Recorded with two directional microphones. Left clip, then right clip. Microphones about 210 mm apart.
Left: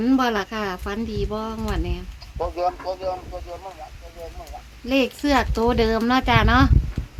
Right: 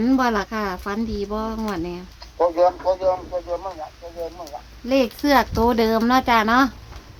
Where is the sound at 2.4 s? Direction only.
25° right (ahead or behind).